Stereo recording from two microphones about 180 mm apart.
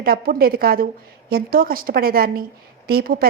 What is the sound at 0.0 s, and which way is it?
A woman's voice, 55° right (ahead or behind).